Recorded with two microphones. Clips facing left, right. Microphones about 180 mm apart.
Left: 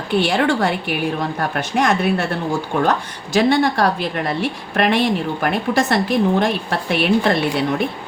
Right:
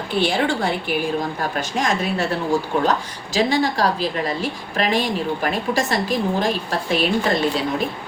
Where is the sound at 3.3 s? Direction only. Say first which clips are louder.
Left 4 dB; 60° left (ahead or behind).